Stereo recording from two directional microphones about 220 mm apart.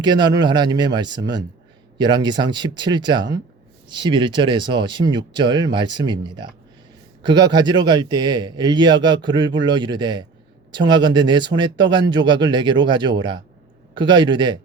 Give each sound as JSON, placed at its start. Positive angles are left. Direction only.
{"t": 0.0, "sound": "speech", "side_deg": -20}